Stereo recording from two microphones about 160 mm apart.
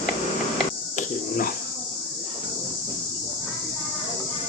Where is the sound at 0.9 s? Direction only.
60° left (ahead or behind).